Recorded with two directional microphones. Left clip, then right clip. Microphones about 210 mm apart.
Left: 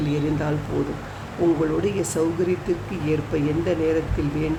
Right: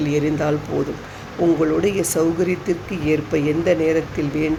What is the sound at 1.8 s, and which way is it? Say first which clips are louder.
Speech: right 4 dB; 10° right (ahead or behind).